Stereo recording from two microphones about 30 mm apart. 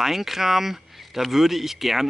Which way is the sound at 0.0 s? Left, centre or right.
Centre.